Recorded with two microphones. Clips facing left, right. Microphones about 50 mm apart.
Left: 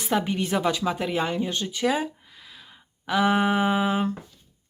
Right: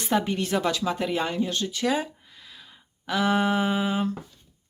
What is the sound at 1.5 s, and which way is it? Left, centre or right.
Speech, centre.